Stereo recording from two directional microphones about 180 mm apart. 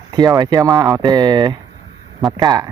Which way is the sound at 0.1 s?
20° right (ahead or behind).